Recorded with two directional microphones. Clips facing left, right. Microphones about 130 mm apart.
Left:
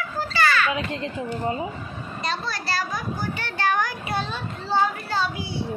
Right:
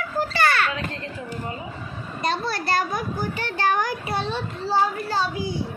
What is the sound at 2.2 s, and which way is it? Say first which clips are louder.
Speech: right 4 dB; 50° right (ahead or behind).